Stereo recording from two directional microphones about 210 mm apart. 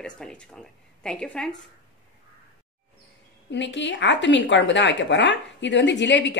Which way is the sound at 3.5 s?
60° left (ahead or behind).